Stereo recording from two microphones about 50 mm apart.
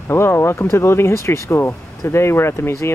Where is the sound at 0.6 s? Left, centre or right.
Left.